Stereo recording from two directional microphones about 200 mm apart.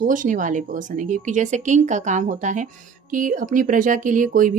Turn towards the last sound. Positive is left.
turn(degrees=-40)  # may be behind; listen again after turning